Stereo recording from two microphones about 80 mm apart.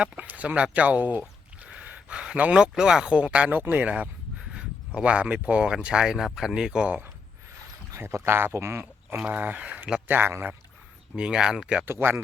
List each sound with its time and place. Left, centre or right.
0.0 s speech: centre
7.9 s speech: right
11.2 s speech: centre
11.9 s speech: right